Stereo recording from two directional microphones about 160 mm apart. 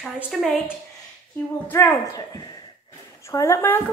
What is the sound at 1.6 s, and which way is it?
Speech, 15° left (ahead or behind).